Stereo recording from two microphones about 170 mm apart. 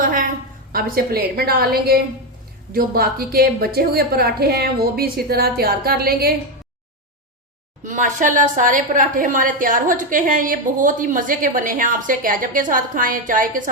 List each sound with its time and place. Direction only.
0.0 s a sound: 50° right (ahead or behind)
0.7 s a woman's voice: 60° right (ahead or behind)
7.9 s a woman's voice: 50° right (ahead or behind)